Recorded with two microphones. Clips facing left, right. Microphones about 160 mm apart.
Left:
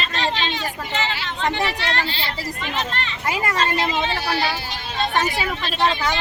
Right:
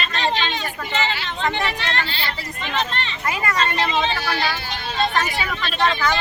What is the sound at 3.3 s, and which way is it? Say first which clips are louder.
Speech: left 1 dB; 25° left (ahead or behind).